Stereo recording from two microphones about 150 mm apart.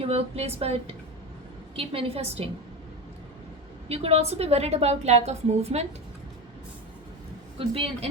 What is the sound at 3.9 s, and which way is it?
A woman's voice, 45° right (ahead or behind).